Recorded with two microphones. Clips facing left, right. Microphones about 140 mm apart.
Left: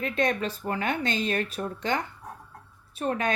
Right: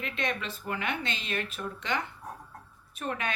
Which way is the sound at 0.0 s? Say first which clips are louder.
Left 7 dB; 40° left (ahead or behind).